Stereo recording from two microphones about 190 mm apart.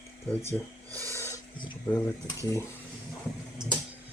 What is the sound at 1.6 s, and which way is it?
Speech, 20° left (ahead or behind).